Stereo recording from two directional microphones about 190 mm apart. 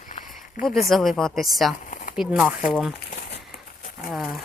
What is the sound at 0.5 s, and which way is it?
Speech, 45° left (ahead or behind).